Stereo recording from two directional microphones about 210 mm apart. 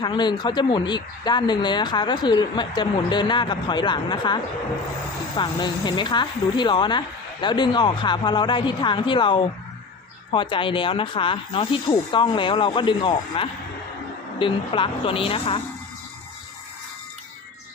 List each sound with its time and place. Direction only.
0.0 s speech: 20° left (ahead or behind)
5.4 s speech: 20° left (ahead or behind)